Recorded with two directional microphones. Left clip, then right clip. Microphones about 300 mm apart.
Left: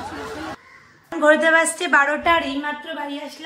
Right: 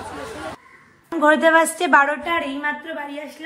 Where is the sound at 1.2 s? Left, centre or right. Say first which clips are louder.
Even; centre.